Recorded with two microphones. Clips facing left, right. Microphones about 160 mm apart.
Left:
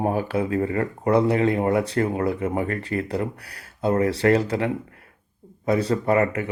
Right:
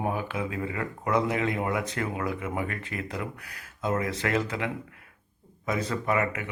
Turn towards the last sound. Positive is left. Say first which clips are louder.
# left 7 dB
turn(degrees=35)  # may be behind; listen again after turning